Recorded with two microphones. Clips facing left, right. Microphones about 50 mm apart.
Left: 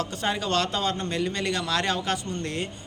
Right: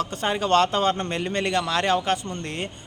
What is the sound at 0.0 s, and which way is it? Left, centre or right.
A man's voice, right.